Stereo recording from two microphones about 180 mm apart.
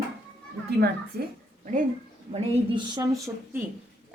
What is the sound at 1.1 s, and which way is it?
Speech, 65° right (ahead or behind).